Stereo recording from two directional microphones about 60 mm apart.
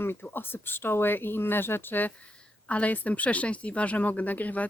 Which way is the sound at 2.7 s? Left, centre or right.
Left.